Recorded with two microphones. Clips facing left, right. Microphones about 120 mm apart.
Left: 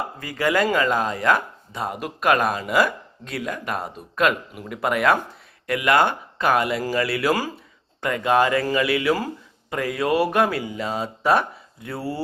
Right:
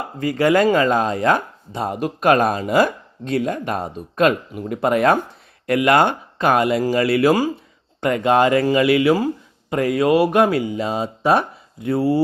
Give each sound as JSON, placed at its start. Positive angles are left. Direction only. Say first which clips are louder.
{"t": 0.2, "sound": "speech", "louder": "right 6 dB", "side_deg": -25}